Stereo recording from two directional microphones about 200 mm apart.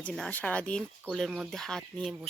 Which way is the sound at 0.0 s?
5° left (ahead or behind).